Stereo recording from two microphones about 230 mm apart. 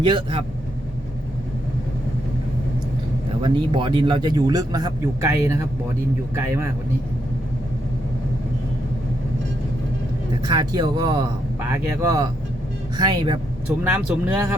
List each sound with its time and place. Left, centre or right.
0.0 s speech: right
3.4 s a man's voice: right
10.4 s a man's voice: centre
13.8 s a man's voice: centre